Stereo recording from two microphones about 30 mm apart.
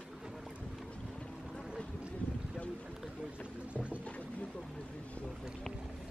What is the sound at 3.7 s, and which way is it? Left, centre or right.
Boat, right.